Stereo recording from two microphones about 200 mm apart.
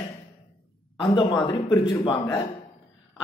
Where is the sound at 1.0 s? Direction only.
25° left (ahead or behind).